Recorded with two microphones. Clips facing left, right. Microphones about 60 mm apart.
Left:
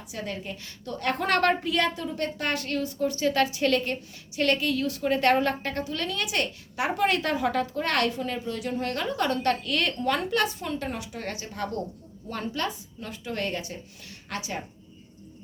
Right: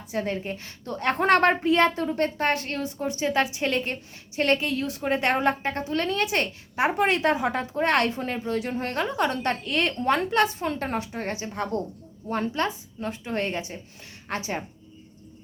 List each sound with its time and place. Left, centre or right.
0.1 s a woman's voice: right